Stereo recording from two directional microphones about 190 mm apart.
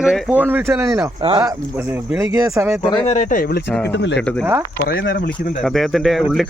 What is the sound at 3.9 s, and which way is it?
Speech, 65° left (ahead or behind).